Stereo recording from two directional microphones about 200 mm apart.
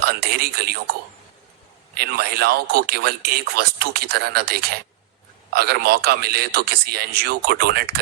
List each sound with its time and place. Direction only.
0.0 s a man's voice: 50° right (ahead or behind)
2.0 s speech: 50° right (ahead or behind)